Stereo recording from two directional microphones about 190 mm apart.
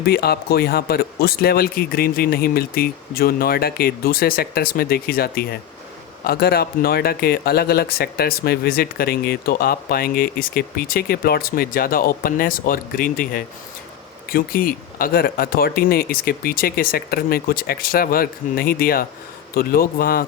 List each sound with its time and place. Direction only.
0.0 s speech: 55° left (ahead or behind)